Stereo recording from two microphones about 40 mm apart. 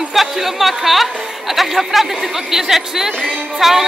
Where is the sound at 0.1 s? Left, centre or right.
Centre.